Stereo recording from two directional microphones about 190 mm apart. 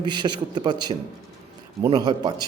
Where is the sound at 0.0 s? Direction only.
25° right (ahead or behind).